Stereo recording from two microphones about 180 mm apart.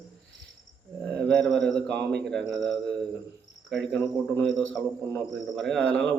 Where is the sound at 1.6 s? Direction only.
5° left (ahead or behind).